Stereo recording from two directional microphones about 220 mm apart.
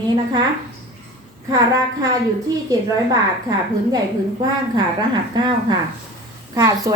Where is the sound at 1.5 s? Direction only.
15° right (ahead or behind).